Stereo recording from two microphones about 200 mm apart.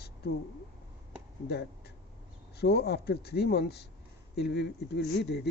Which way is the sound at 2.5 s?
55° left (ahead or behind).